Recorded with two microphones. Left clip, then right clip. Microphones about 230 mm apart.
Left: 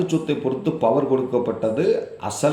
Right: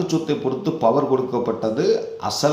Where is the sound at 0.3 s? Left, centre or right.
Centre.